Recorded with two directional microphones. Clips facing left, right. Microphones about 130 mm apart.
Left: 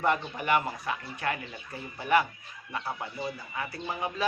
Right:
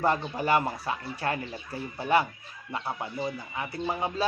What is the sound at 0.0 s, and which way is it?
Speech, 30° right (ahead or behind).